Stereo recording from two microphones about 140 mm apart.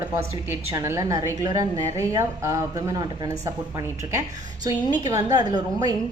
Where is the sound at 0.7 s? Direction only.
20° right (ahead or behind).